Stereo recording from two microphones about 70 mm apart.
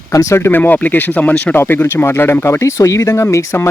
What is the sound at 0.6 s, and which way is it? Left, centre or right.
Speech, left.